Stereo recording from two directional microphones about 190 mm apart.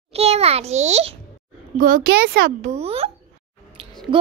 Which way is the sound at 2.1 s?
70° right (ahead or behind).